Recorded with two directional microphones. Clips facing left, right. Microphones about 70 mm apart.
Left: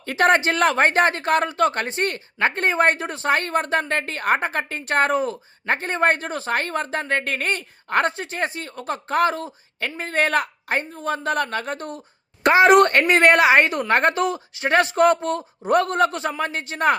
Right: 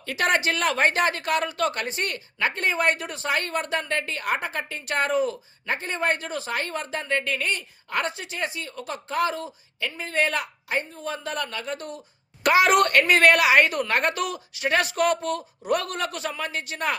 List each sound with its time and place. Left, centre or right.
0.0 s speech: left
12.4 s a woman's voice: left